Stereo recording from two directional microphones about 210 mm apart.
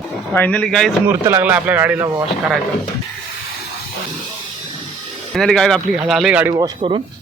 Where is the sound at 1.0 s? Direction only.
10° right (ahead or behind).